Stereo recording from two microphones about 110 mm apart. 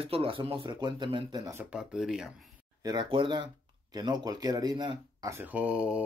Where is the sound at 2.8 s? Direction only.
45° right (ahead or behind).